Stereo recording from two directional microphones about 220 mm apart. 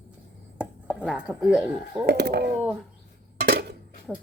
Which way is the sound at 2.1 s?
50° right (ahead or behind).